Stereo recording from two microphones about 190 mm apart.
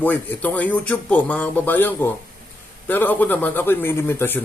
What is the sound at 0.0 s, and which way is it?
A man's voice, 10° left (ahead or behind).